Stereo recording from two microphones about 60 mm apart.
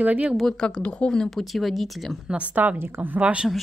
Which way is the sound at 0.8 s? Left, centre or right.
Centre.